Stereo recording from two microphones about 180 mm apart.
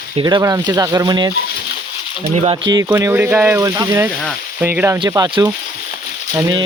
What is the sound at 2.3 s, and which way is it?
Speech, 35° right (ahead or behind).